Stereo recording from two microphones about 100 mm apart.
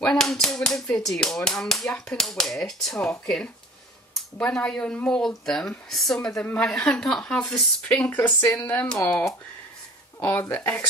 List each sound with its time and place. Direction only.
0.0 s speech: 5° left (ahead or behind)
4.1 s speech: 10° left (ahead or behind)
10.2 s speech: 20° left (ahead or behind)